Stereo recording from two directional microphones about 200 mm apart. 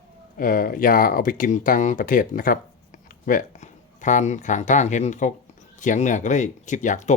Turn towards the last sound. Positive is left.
turn(degrees=40)  # may be behind; listen again after turning